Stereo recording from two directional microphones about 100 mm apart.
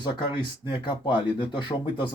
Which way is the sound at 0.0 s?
50° left (ahead or behind).